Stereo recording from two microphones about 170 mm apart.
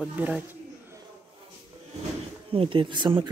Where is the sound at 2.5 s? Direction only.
30° right (ahead or behind).